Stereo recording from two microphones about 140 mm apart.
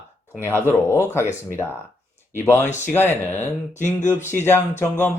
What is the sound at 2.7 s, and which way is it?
Speech, 55° left (ahead or behind).